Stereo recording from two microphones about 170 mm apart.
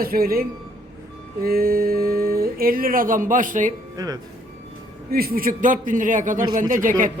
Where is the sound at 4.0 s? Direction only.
20° right (ahead or behind).